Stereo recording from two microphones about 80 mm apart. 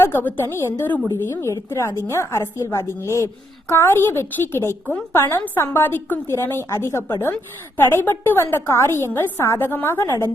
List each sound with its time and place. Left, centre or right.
0.0 s a woman's voice: left